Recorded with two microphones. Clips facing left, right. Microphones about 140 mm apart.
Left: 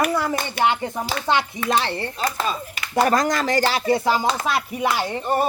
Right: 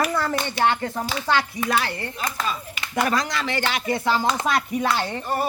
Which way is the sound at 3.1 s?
45° left (ahead or behind).